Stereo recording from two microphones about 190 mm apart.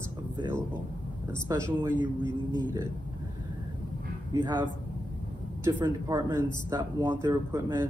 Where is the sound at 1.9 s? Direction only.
25° left (ahead or behind).